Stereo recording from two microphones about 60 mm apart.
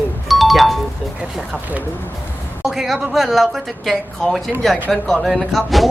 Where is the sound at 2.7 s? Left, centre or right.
Centre.